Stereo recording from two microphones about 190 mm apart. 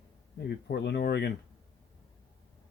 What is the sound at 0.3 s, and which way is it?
Speech, 60° left (ahead or behind).